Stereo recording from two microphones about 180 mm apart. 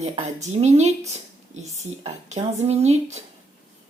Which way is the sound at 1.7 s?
40° right (ahead or behind).